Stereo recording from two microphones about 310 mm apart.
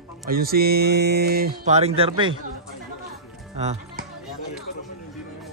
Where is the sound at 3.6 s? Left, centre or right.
Right.